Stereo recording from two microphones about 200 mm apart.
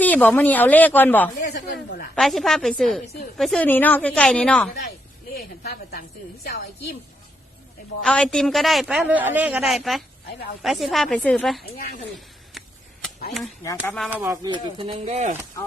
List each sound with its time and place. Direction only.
0.0 s a woman's voice: 10° left (ahead or behind)
1.4 s a sound: 40° left (ahead or behind)
2.1 s a man's voice: centre (ahead or behind)
5.6 s a woman's voice: 50° left (ahead or behind)
8.0 s a man's voice: 5° left (ahead or behind)
13.8 s a man's voice: 5° left (ahead or behind)
14.1 s speech: 10° right (ahead or behind)
14.4 s speech: 25° right (ahead or behind)